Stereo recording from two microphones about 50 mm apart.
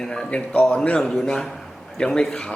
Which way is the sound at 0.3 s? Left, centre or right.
Left.